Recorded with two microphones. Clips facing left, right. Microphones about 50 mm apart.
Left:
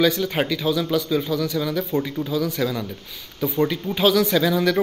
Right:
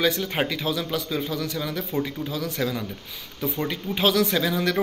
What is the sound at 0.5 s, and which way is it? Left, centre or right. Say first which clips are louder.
Speech: left 5 dB; centre.